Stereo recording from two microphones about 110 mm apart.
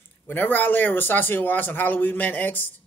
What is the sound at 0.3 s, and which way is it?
Speech, 15° left (ahead or behind).